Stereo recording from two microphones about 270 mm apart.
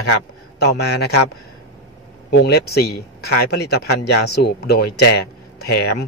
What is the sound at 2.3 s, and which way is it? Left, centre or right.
Speech, left.